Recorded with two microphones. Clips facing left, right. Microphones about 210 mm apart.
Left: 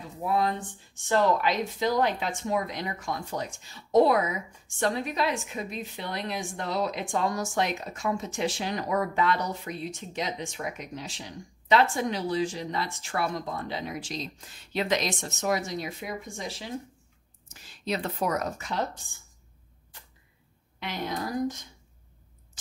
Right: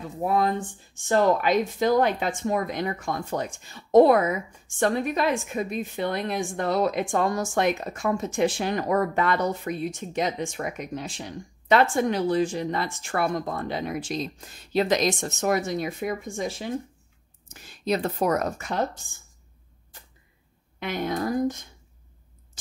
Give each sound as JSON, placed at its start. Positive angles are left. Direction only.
{"t": 0.2, "sound": "speech", "side_deg": -50}